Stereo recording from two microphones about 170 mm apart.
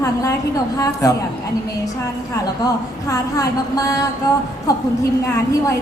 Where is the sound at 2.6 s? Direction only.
20° left (ahead or behind).